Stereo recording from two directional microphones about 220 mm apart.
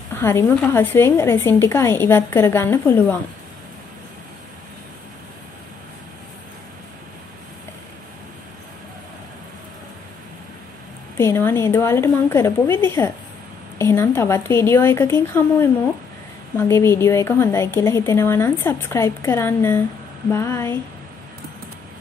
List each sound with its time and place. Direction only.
0.1 s a woman's voice: 10° left (ahead or behind)
11.1 s a woman's voice: 10° left (ahead or behind)